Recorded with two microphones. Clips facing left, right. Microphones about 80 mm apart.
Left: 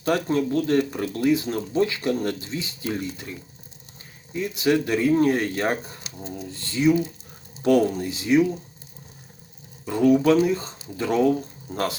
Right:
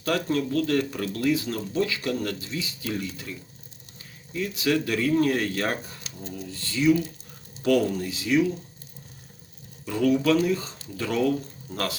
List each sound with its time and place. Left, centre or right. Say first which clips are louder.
0.0 s speech: left 3 dB; left
9.8 s speech: left 4 dB; left